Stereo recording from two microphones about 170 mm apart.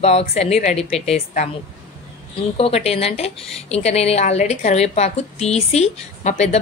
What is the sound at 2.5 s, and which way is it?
Speech, 35° left (ahead or behind).